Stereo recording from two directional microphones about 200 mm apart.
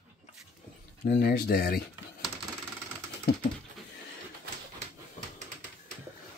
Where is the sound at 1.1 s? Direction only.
50° left (ahead or behind).